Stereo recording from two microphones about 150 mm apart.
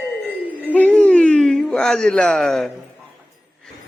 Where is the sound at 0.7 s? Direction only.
10° left (ahead or behind).